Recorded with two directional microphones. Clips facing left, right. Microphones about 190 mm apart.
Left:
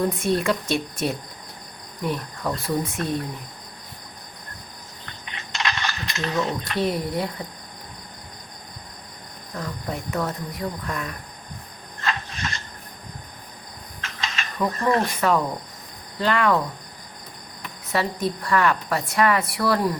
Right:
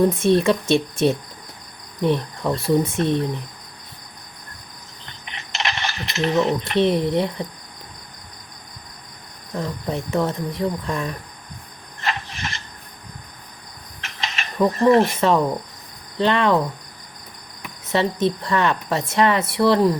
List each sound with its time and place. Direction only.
0.1 s a woman's voice: 25° right (ahead or behind)
2.0 s cricket: 25° right (ahead or behind)
2.9 s a woman's voice: 25° right (ahead or behind)
5.5 s speech: 25° right (ahead or behind)
9.6 s a woman's voice: 25° right (ahead or behind)
11.9 s a sound: 25° right (ahead or behind)
14.0 s cricket: 25° right (ahead or behind)
16.1 s a woman's voice: 25° right (ahead or behind)
17.9 s a woman's voice: 25° right (ahead or behind)